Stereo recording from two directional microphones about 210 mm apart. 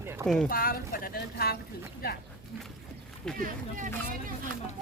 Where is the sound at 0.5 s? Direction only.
45° left (ahead or behind).